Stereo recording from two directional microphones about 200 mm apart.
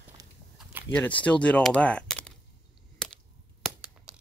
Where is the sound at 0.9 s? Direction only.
5° left (ahead or behind).